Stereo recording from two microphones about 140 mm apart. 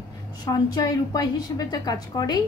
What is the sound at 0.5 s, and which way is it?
A woman's voice, 25° left (ahead or behind).